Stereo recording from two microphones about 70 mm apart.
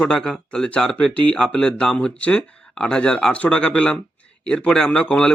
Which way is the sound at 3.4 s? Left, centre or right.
Centre.